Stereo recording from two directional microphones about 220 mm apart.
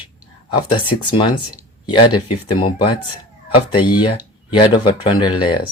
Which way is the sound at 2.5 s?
20° left (ahead or behind).